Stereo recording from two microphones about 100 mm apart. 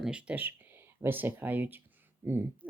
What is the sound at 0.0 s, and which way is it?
Speech, 10° right (ahead or behind).